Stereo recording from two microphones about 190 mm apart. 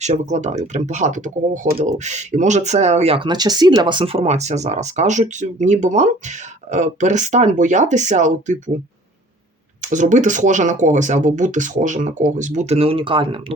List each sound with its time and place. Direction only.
0.0 s speech: 35° right (ahead or behind)
9.9 s speech: 40° right (ahead or behind)